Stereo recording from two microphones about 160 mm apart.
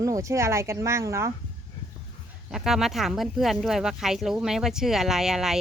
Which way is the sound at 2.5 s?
Centre (ahead or behind).